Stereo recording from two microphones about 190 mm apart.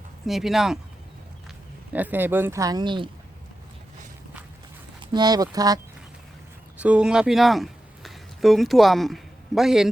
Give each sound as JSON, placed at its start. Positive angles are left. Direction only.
{"t": 0.3, "sound": "speech", "side_deg": 0}
{"t": 1.9, "sound": "speech", "side_deg": -10}
{"t": 4.9, "sound": "speech", "side_deg": -20}
{"t": 6.7, "sound": "speech", "side_deg": -5}